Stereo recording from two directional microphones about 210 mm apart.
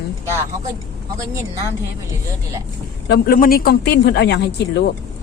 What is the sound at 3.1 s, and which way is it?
Speech, 45° left (ahead or behind).